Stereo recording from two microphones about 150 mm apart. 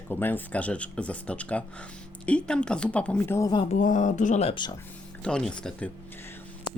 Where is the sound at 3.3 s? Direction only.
25° left (ahead or behind).